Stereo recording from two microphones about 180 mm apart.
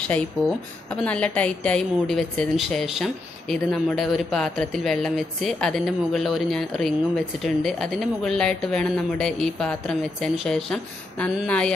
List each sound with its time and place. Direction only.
1.0 s a woman's voice: 5° left (ahead or behind)